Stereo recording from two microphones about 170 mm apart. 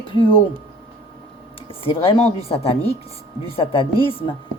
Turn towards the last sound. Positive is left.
turn(degrees=30)  # may be behind; listen again after turning